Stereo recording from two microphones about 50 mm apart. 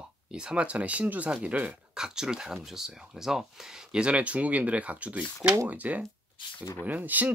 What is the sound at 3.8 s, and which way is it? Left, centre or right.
Speech, right.